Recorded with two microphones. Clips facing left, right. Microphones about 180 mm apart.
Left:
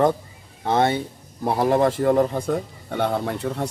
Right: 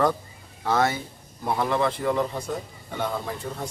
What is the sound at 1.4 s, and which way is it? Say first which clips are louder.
Speech: left 5 dB; 40° left (ahead or behind).